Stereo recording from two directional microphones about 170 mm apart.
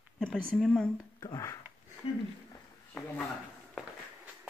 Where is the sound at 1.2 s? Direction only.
20° left (ahead or behind).